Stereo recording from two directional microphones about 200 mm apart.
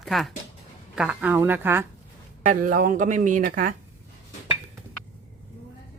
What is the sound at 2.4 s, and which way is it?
Speech, 40° right (ahead or behind).